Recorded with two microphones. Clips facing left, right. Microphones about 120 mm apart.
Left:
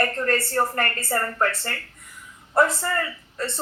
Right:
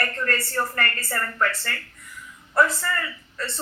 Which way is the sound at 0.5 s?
40° left (ahead or behind).